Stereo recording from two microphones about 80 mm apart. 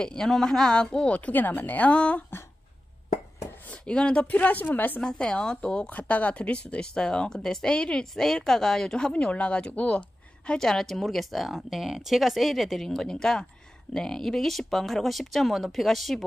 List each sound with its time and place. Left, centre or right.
0.0 s speech: centre
3.6 s speech: centre
5.0 s speech: centre